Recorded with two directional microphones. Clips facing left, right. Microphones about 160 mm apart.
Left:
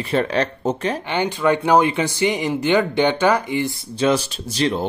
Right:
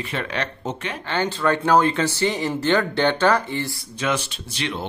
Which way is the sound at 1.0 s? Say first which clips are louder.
Left 1 dB; 15° left (ahead or behind).